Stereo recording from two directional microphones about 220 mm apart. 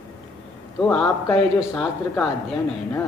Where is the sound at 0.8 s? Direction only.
5° left (ahead or behind).